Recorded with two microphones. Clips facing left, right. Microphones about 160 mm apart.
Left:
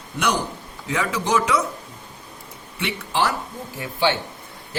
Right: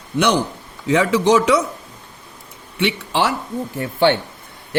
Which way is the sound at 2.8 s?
80° right.